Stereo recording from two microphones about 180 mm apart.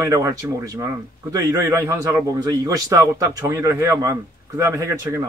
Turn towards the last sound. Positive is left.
turn(degrees=-15)  # may be behind; listen again after turning